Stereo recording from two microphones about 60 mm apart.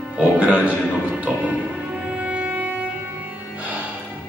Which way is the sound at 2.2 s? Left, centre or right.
Right.